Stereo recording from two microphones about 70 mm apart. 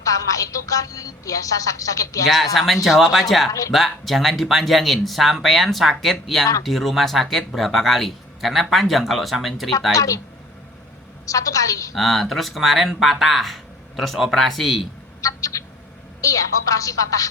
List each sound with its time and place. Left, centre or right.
0.0 s speech: left
2.2 s speech: centre
9.9 s speech: left
11.3 s speech: left
11.9 s speech: centre
15.2 s a sound: left
16.2 s speech: left